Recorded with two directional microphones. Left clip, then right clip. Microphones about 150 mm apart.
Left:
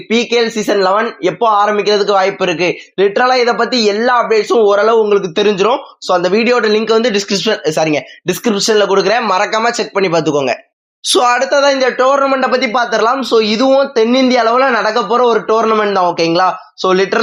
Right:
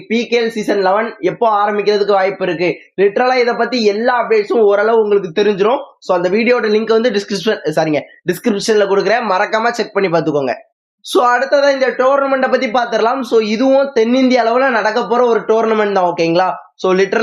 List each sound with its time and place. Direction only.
0.1 s speech: 10° left (ahead or behind)
11.1 s a man's voice: 35° left (ahead or behind); by 12.5 s 15° left (ahead or behind)
12.5 s speech: centre (ahead or behind)